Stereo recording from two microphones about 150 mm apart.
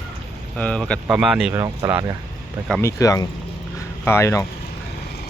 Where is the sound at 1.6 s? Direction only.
15° right (ahead or behind).